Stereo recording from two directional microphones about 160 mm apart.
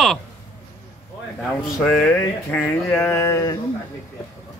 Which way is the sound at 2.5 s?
15° left (ahead or behind).